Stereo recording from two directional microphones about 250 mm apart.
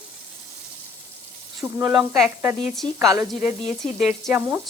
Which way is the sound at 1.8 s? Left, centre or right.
Centre.